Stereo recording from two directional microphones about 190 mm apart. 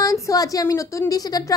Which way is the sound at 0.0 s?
15° left (ahead or behind).